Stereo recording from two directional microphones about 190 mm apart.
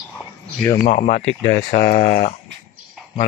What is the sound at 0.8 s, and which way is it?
Speech, 35° left (ahead or behind).